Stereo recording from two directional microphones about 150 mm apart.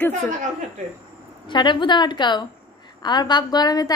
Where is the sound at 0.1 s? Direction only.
50° right (ahead or behind).